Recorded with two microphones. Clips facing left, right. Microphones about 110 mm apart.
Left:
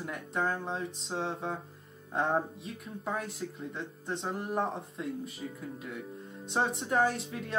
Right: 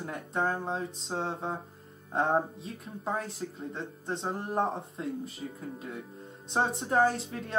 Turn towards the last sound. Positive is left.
turn(degrees=-35)  # may be behind; listen again after turning